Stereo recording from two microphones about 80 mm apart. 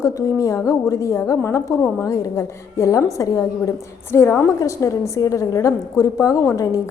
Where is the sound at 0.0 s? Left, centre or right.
Left.